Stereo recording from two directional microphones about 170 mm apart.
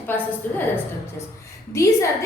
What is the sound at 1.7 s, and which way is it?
Speech, 20° left (ahead or behind).